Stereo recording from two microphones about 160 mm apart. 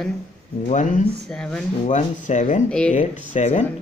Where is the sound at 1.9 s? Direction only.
50° left (ahead or behind).